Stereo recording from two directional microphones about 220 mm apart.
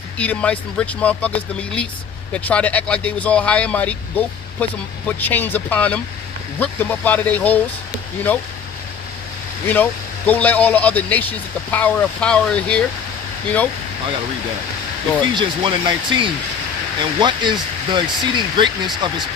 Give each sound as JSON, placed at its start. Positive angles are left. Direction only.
{"t": 0.2, "sound": "speech", "side_deg": 5}
{"t": 9.6, "sound": "speech", "side_deg": 10}
{"t": 15.2, "sound": "speech", "side_deg": -20}